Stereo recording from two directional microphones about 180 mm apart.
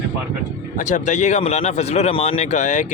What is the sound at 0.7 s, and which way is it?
Speech, 45° left (ahead or behind).